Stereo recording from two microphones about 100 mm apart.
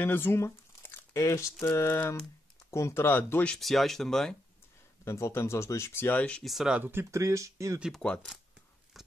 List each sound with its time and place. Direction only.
0.0 s speech: 20° left (ahead or behind)
3.5 s speech: centre (ahead or behind)
5.0 s speech: 25° left (ahead or behind)
6.4 s speech: 5° right (ahead or behind)
6.8 s speech: 25° right (ahead or behind)
8.0 s speech: 5° left (ahead or behind)
9.0 s a sound: centre (ahead or behind)